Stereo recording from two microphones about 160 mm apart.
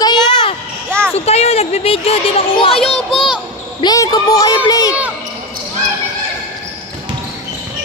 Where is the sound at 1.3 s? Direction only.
40° left (ahead or behind).